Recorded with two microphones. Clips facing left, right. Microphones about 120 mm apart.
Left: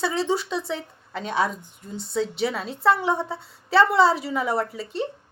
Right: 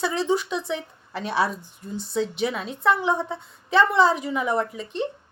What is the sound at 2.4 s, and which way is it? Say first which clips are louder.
A woman's voice: left 1 dB; 35° left (ahead or behind).